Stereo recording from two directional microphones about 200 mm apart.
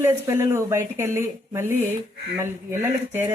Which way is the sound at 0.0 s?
15° right (ahead or behind).